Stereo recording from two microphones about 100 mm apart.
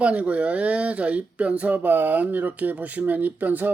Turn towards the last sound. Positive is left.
turn(degrees=-15)  # may be behind; listen again after turning